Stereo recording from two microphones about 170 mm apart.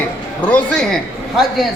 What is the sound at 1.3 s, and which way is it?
Speech, centre (ahead or behind).